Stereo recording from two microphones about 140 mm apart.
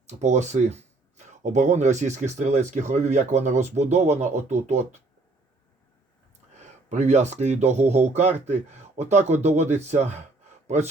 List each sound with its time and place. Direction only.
0.1 s speech: 55° right (ahead or behind)
6.5 s speech: 55° right (ahead or behind)